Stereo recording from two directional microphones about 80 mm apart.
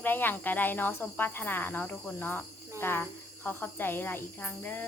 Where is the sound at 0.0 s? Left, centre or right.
Left.